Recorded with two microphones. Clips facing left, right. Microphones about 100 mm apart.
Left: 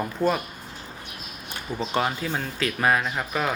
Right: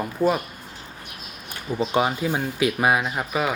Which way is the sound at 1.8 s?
15° right (ahead or behind).